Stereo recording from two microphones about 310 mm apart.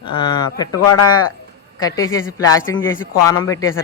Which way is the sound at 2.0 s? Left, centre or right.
Left.